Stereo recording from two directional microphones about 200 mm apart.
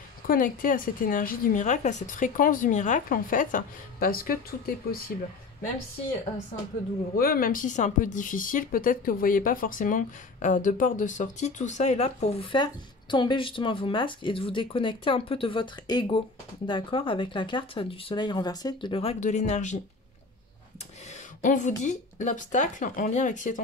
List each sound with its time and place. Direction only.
0.3 s a woman's voice: 45° left (ahead or behind)
7.2 s speech: 45° left (ahead or behind)
21.1 s speech: 40° left (ahead or behind)